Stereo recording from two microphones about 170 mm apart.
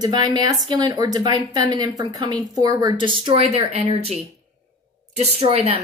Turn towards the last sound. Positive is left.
turn(degrees=-40)  # may be behind; listen again after turning